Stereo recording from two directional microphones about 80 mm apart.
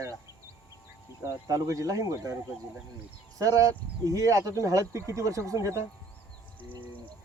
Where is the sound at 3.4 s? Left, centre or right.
Right.